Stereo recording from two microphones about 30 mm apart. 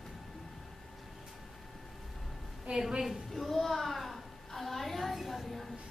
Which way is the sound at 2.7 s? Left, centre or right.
Right.